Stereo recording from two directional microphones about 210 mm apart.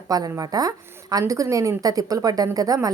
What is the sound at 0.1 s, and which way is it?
A woman's voice, 15° right (ahead or behind).